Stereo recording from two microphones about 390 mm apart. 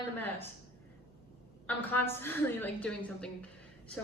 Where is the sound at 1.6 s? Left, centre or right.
Centre.